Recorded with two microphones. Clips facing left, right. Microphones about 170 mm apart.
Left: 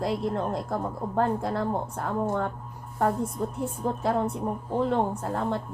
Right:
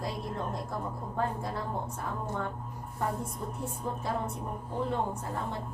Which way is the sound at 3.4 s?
75° left (ahead or behind).